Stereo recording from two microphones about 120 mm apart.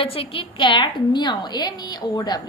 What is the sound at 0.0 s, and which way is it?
A woman's voice, 50° left (ahead or behind).